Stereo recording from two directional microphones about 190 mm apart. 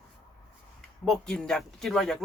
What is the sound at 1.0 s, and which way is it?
Speech, 5° left (ahead or behind).